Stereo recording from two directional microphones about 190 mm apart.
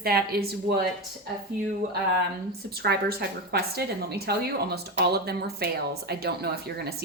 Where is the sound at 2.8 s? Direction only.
55° right (ahead or behind).